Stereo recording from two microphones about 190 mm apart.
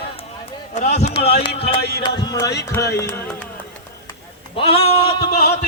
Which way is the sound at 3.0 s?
10° left (ahead or behind).